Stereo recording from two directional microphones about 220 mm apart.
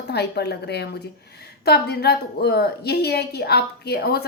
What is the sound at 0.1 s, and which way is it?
Speech, 50° left (ahead or behind).